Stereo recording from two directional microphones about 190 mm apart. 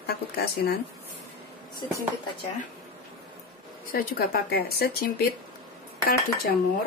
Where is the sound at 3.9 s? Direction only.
50° left (ahead or behind).